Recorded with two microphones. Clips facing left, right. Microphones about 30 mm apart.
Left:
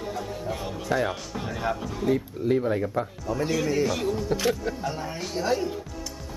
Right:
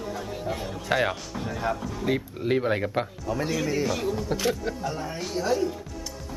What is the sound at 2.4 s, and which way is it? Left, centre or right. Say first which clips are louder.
Speech: even; right.